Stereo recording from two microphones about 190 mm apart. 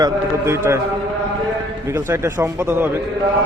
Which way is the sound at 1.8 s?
15° right (ahead or behind).